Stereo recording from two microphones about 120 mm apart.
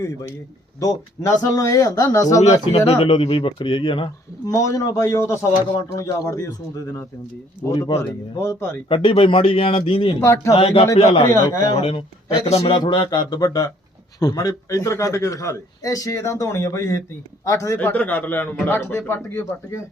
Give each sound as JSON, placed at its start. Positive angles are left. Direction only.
{"t": 0.0, "sound": "a man's voice", "side_deg": 30}
{"t": 2.4, "sound": "speech", "side_deg": 65}
{"t": 3.1, "sound": "a man's voice", "side_deg": 50}
{"t": 4.4, "sound": "a man's voice", "side_deg": 25}
{"t": 8.9, "sound": "a man's voice", "side_deg": 45}
{"t": 10.2, "sound": "a man's voice", "side_deg": 20}
{"t": 10.5, "sound": "a man's voice", "side_deg": 55}
{"t": 12.7, "sound": "a man's voice", "side_deg": 40}
{"t": 17.7, "sound": "speech", "side_deg": 10}